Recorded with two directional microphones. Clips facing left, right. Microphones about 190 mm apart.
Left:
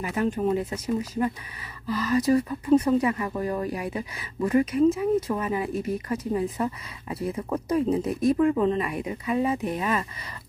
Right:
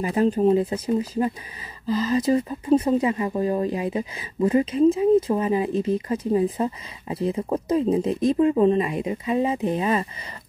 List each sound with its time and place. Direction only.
0.0 s speech: 30° right (ahead or behind)